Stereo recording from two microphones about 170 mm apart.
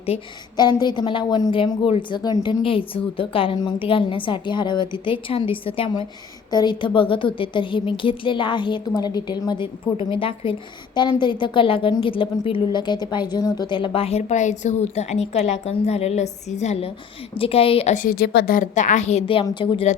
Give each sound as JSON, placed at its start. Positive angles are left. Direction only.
{"t": 0.0, "sound": "a woman's voice", "side_deg": 30}
{"t": 17.9, "sound": "a woman's voice", "side_deg": 60}